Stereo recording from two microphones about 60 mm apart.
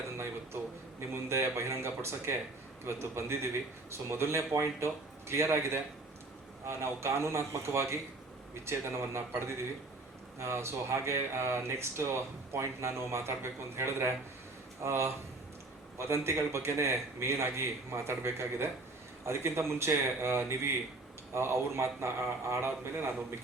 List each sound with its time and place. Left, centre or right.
0.2 s a man's voice: right